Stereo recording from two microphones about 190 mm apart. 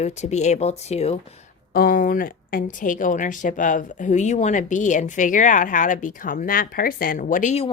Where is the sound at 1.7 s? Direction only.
50° left (ahead or behind).